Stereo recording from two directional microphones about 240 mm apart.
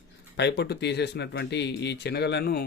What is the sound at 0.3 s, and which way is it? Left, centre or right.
Speech, left.